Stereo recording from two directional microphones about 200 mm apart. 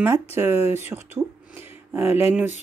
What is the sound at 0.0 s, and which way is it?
Speech, 10° right (ahead or behind).